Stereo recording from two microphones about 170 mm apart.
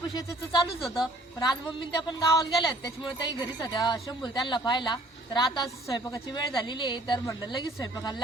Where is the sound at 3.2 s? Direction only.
25° left (ahead or behind).